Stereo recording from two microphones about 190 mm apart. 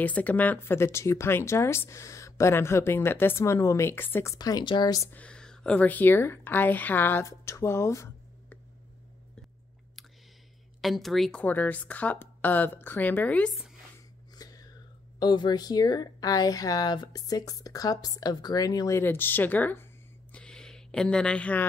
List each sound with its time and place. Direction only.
0.0 s speech: 10° left (ahead or behind)
10.8 s speech: centre (ahead or behind)
14.3 s chewing: 20° left (ahead or behind)
15.1 s speech: 20° left (ahead or behind)
20.3 s a sound: 5° left (ahead or behind)